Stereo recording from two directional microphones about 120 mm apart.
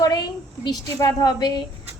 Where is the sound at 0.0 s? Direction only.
35° left (ahead or behind).